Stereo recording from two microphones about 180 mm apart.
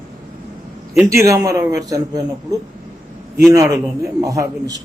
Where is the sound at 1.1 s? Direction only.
15° right (ahead or behind).